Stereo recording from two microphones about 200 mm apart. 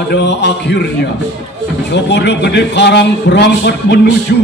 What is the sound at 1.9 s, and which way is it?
A man's voice, 60° left (ahead or behind).